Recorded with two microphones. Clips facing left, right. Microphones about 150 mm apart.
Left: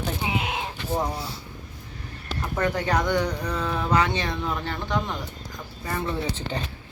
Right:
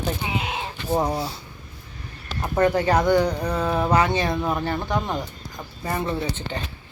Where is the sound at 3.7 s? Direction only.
45° right (ahead or behind).